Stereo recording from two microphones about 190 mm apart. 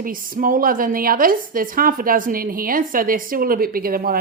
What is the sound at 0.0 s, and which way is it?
A woman's voice, 45° right (ahead or behind).